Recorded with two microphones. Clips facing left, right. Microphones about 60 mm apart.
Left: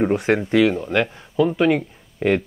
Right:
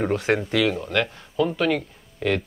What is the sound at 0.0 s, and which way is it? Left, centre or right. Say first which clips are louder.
Speech: left 3 dB; centre.